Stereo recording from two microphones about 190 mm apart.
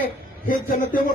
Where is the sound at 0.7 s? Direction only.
50° left (ahead or behind).